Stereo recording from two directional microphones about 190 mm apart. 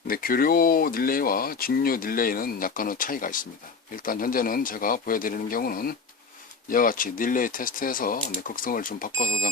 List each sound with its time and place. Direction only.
0.1 s speech: 50° left (ahead or behind)